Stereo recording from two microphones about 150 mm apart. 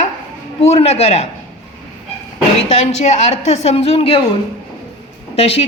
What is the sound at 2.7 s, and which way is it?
Speech, 45° left (ahead or behind).